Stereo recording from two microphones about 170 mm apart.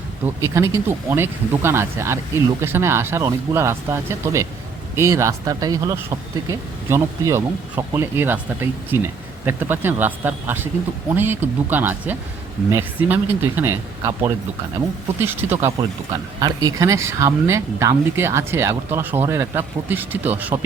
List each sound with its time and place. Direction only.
0.4 s speech: 15° right (ahead or behind)